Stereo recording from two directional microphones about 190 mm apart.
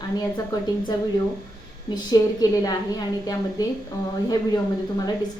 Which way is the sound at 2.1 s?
20° left (ahead or behind).